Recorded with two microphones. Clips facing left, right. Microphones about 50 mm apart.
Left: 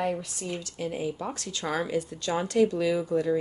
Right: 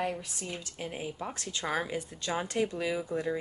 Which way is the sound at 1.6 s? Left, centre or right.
Centre.